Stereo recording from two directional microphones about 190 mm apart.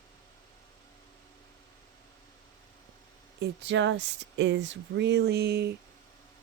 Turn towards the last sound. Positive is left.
turn(degrees=-60)  # may be behind; listen again after turning